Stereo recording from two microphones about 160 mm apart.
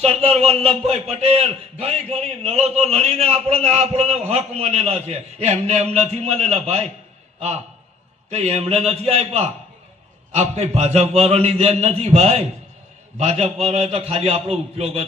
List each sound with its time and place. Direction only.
0.0 s a man's voice: 40° right (ahead or behind)